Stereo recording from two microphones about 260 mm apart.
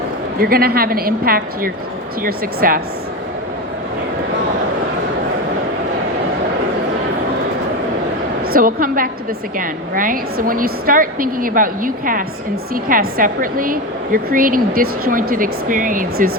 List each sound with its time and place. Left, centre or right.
0.3 s a woman's voice: right
8.4 s a woman's voice: right